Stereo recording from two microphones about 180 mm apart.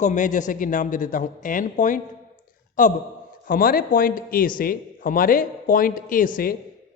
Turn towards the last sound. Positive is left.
turn(degrees=50)  # may be behind; listen again after turning